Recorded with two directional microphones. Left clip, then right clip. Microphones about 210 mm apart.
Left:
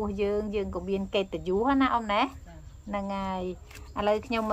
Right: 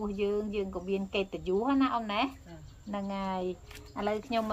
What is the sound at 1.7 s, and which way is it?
Speech, 20° left (ahead or behind).